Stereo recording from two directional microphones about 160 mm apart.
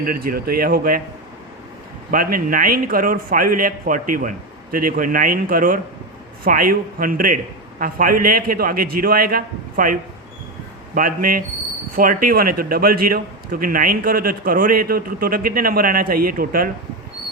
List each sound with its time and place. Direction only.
0.0 s a man's voice: 65° right (ahead or behind)
2.0 s a man's voice: 60° right (ahead or behind)